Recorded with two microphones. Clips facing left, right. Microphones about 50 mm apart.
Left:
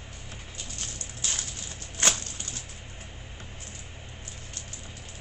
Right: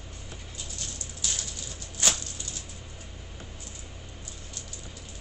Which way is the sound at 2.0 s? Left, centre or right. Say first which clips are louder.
Left 2 dB; left.